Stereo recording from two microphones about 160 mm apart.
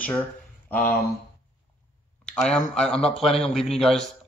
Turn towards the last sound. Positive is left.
turn(degrees=0)  # may be behind; listen again after turning